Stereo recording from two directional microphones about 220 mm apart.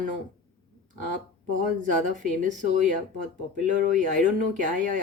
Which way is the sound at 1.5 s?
35° right (ahead or behind).